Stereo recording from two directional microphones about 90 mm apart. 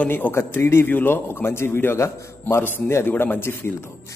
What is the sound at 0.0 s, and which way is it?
A man's voice, 20° left (ahead or behind).